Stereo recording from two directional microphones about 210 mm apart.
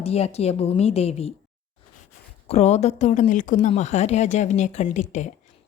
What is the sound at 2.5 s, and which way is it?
A woman's voice, 30° left (ahead or behind).